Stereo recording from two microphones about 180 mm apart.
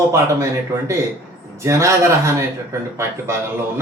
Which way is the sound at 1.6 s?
15° right (ahead or behind).